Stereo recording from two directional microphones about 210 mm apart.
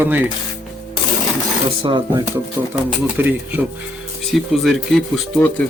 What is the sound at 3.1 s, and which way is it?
Speech, 10° right (ahead or behind).